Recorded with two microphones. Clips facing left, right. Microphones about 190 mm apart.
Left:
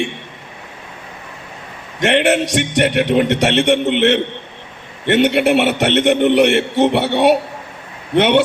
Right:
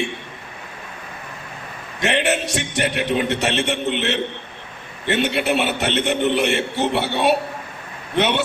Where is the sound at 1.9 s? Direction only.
65° left (ahead or behind).